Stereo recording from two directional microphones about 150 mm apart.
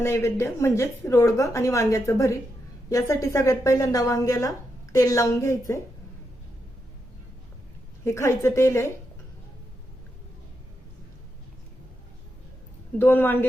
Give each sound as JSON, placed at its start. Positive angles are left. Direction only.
{"t": 0.0, "sound": "a woman's voice", "side_deg": 15}
{"t": 8.0, "sound": "a woman's voice", "side_deg": 20}
{"t": 13.0, "sound": "a woman's voice", "side_deg": 15}